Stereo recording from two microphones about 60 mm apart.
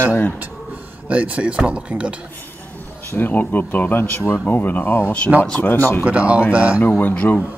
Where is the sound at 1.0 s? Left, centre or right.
Right.